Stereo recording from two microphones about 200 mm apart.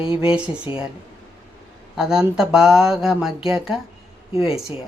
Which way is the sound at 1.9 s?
5° right (ahead or behind).